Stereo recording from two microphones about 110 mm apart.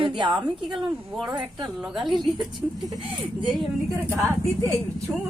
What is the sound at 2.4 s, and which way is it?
Speech, 35° right (ahead or behind).